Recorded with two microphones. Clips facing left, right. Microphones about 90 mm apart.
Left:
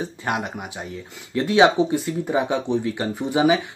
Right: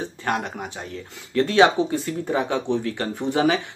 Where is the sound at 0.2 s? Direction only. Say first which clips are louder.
Right 2 dB; 10° left (ahead or behind).